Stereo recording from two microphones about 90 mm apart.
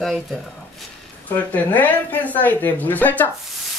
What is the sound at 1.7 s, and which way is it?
Speech, 20° left (ahead or behind).